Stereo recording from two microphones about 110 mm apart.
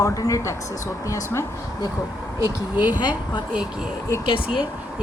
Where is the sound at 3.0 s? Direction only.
45° left (ahead or behind).